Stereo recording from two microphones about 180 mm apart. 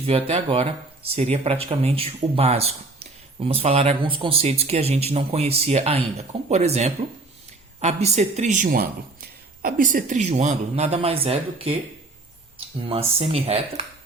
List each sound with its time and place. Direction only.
0.0 s speech: 35° right (ahead or behind)